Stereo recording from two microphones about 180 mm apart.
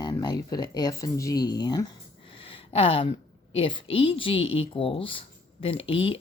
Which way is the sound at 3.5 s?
30° left (ahead or behind).